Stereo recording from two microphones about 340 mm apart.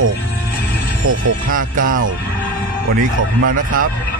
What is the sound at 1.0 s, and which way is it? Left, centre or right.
Speech, right.